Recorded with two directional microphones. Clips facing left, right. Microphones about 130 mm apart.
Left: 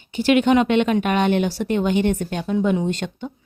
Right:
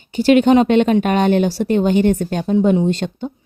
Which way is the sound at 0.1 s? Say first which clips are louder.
Right 5 dB; 35° right (ahead or behind).